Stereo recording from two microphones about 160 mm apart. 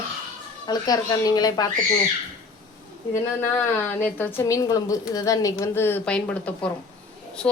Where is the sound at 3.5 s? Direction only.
15° left (ahead or behind).